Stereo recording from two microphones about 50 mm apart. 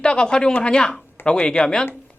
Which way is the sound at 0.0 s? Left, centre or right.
Centre.